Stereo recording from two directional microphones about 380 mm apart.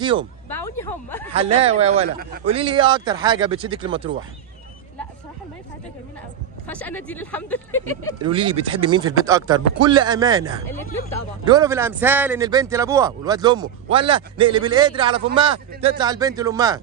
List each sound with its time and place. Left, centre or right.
0.5 s speech: centre
1.3 s a man's voice: centre
6.7 s speech: centre
8.2 s a man's voice: centre